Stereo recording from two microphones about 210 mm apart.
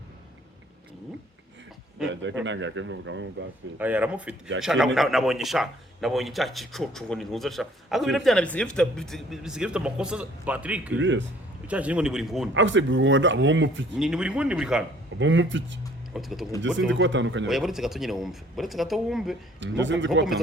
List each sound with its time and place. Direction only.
2.4 s speech: 60° right (ahead or behind)
3.8 s a man's voice: 10° right (ahead or behind)
10.9 s speech: 60° right (ahead or behind)
11.7 s a man's voice: 5° right (ahead or behind)
12.5 s speech: 60° right (ahead or behind)
13.9 s a man's voice: 5° right (ahead or behind)
15.2 s speech: 60° right (ahead or behind)
16.1 s a man's voice: centre (ahead or behind)
16.9 s speech: 60° right (ahead or behind)
17.5 s a man's voice: centre (ahead or behind)
19.5 s speech: 60° right (ahead or behind)